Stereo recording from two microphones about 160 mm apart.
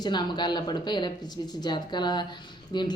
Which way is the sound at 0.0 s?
25° left (ahead or behind).